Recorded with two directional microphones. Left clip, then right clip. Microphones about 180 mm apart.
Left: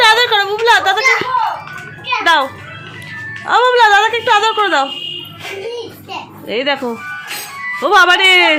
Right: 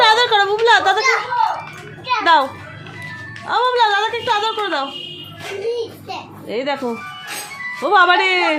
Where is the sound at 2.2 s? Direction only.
10° right (ahead or behind).